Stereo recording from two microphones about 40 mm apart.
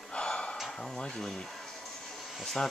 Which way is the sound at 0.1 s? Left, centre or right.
Left.